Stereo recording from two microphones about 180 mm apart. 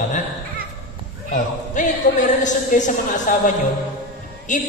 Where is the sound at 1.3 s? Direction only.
45° left (ahead or behind).